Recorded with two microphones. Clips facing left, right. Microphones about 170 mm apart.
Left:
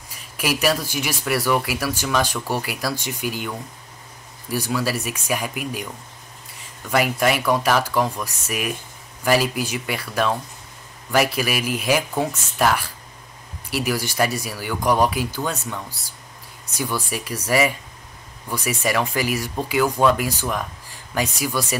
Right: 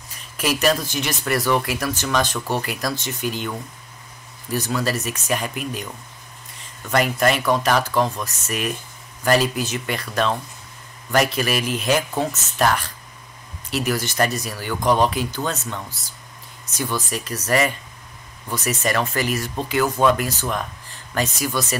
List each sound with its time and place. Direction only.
0.4 s speech: 10° left (ahead or behind)
6.9 s speech: 5° left (ahead or behind)